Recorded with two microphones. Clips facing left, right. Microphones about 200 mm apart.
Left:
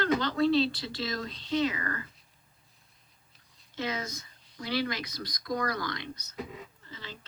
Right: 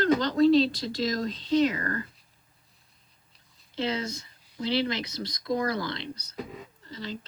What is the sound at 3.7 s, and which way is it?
A man's voice, 30° right (ahead or behind).